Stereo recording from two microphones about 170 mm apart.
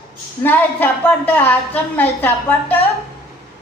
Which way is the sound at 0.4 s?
10° left (ahead or behind).